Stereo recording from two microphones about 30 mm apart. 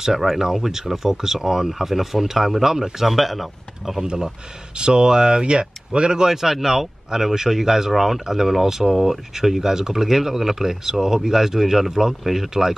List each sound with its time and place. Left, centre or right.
0.0 s speech: centre
4.7 s speech: right
6.2 s speech: centre